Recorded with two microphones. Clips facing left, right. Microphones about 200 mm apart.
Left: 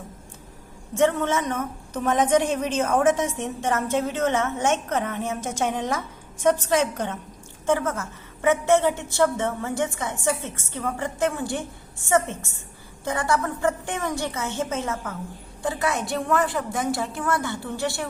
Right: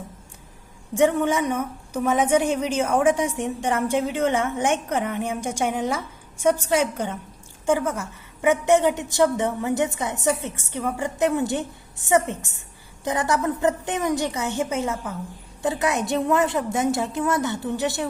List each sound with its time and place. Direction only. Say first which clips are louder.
0.9 s a woman's voice: right 2 dB; 15° right (ahead or behind)